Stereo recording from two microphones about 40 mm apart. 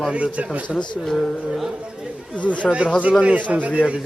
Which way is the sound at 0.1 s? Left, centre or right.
Right.